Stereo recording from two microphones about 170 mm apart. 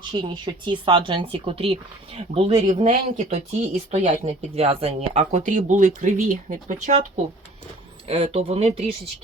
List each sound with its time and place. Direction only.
0.1 s speech: 25° right (ahead or behind); by 7.0 s 45° right (ahead or behind)
8.0 s speech: 35° right (ahead or behind)